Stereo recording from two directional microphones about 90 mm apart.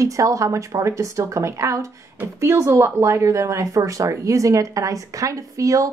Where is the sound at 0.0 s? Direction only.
35° right (ahead or behind).